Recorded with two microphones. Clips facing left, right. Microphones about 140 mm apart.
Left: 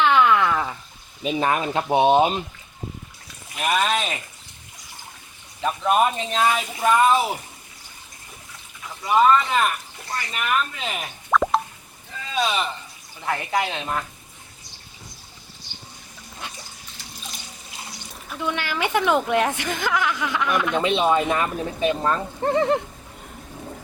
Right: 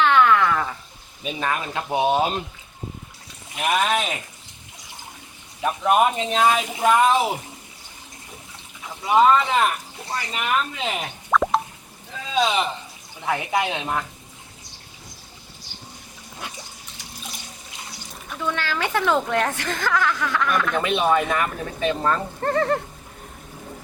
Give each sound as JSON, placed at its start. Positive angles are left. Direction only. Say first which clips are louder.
{"t": 0.0, "sound": "a sound", "louder": "even", "side_deg": 10}
{"t": 1.2, "sound": "speech", "louder": "left 4 dB", "side_deg": 25}
{"t": 3.5, "sound": "speech", "louder": "right 1 dB", "side_deg": -15}
{"t": 5.6, "sound": "speech", "louder": "right 1 dB", "side_deg": -10}
{"t": 9.0, "sound": "speech", "louder": "right 1 dB", "side_deg": -20}
{"t": 11.3, "sound": "plop", "louder": "even", "side_deg": 0}
{"t": 12.3, "sound": "speech", "louder": "right 3 dB", "side_deg": -20}
{"t": 18.3, "sound": "speech", "louder": "even", "side_deg": 15}